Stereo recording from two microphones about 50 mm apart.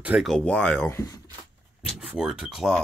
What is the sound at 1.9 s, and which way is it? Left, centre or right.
Speech, centre.